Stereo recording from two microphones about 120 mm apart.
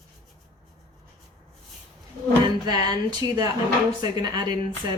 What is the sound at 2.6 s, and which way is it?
Speech, 35° right (ahead or behind).